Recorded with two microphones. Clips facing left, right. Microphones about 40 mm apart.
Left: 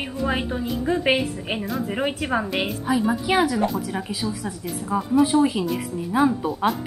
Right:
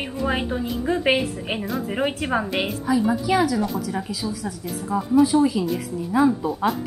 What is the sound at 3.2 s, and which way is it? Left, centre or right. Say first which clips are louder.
A woman's voice: even; left.